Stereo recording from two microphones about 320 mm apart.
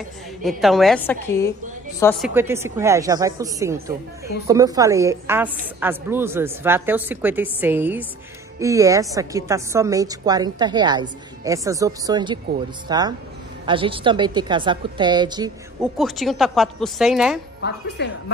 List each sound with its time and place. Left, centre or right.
0.4 s a woman's voice: centre
15.8 s a woman's voice: centre
17.6 s speech: left